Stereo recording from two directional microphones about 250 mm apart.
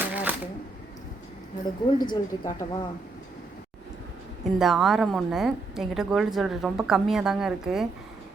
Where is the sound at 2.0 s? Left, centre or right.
Centre.